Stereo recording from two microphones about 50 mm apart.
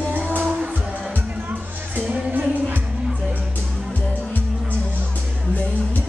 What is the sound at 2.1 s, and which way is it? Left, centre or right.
Music, right.